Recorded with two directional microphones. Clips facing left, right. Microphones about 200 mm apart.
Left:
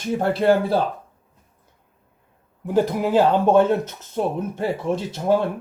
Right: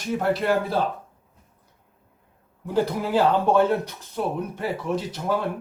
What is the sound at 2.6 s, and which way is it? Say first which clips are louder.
A man's voice: left 4 dB; 20° left (ahead or behind).